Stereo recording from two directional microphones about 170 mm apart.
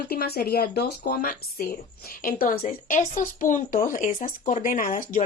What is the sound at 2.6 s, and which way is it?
A woman's voice, 50° left (ahead or behind).